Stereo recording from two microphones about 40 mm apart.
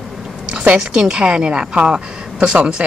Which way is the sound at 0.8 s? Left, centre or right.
Centre.